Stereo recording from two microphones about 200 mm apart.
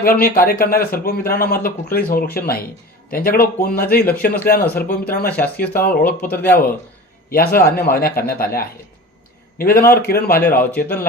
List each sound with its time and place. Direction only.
0.0 s a man's voice: 45° left (ahead or behind)
5.4 s speech: 5° left (ahead or behind)
5.7 s a man's voice: 50° left (ahead or behind)
6.1 s speech: 10° left (ahead or behind)
7.3 s a man's voice: 45° left (ahead or behind)